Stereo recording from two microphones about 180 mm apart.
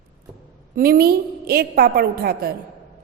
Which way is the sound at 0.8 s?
55° right (ahead or behind).